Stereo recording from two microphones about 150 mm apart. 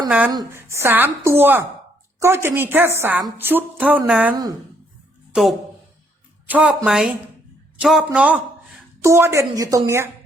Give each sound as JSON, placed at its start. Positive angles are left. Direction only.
{"t": 0.3, "sound": "a woman's voice", "side_deg": -20}
{"t": 9.0, "sound": "a woman's voice", "side_deg": -20}